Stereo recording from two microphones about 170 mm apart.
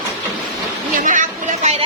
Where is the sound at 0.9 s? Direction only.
50° right (ahead or behind).